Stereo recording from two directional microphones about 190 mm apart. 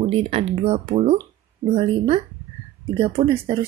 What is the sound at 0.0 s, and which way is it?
Speech, 30° right (ahead or behind).